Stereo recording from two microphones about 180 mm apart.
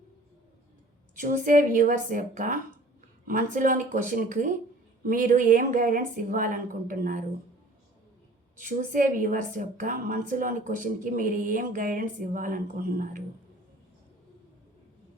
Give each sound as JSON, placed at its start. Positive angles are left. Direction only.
{"t": 1.2, "sound": "a woman's voice", "side_deg": -45}
{"t": 8.5, "sound": "a woman's voice", "side_deg": -45}